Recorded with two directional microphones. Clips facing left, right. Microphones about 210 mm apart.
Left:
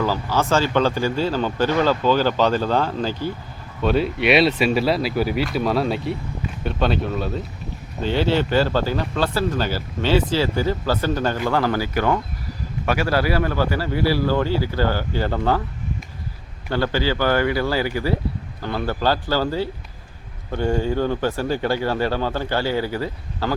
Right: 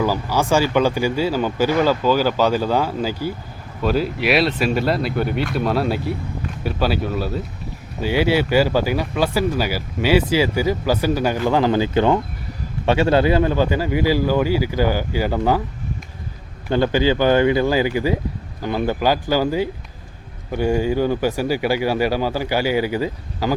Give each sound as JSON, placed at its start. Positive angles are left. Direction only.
{"t": 0.0, "sound": "speech", "side_deg": -10}
{"t": 16.6, "sound": "speech", "side_deg": -15}